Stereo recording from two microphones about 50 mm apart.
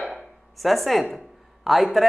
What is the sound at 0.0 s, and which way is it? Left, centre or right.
Speech, centre.